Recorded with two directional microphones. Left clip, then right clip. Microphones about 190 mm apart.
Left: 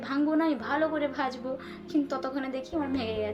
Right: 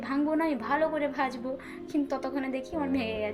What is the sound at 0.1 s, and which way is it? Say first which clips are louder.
A woman's voice: left 1 dB; 15° right (ahead or behind).